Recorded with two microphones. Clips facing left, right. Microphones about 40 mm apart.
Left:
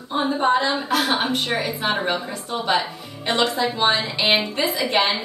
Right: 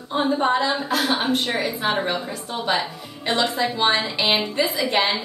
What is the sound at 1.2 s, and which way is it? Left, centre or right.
Speech, centre.